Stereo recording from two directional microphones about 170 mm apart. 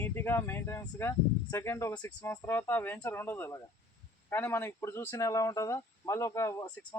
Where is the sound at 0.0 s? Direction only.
15° left (ahead or behind).